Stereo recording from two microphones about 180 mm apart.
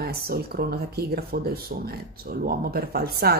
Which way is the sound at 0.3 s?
60° right (ahead or behind).